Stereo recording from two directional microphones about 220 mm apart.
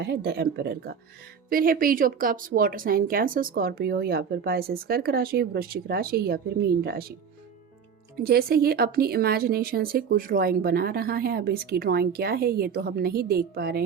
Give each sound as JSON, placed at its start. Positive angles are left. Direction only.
{"t": 0.0, "sound": "speech", "side_deg": -50}
{"t": 8.2, "sound": "speech", "side_deg": -45}